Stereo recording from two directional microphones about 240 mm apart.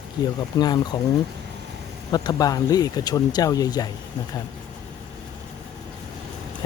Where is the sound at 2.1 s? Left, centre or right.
Centre.